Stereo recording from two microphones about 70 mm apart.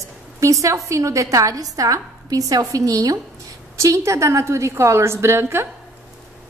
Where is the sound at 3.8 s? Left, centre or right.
Right.